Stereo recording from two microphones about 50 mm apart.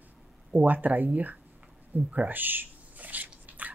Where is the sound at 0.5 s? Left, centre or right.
Right.